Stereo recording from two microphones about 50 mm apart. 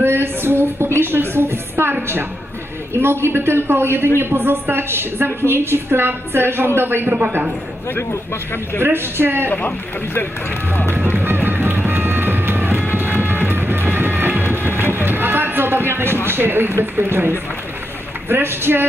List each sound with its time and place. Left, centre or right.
0.0 s music: right
3.0 s speech: right
8.8 s speech: right
9.5 s speech: left
11.1 s music: right
16.3 s speech: right